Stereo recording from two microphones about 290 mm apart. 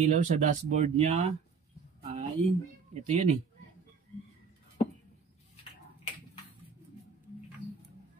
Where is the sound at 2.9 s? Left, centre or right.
Right.